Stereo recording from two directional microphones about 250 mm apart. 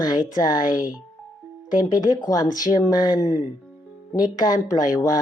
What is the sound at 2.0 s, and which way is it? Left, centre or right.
Speech, centre.